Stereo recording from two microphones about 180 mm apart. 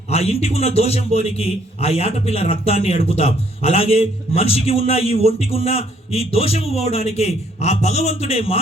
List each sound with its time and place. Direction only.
0.1 s a man's voice: 35° left (ahead or behind)